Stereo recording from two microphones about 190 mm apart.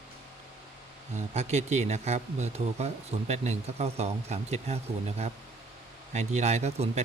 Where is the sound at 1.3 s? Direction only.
35° right (ahead or behind).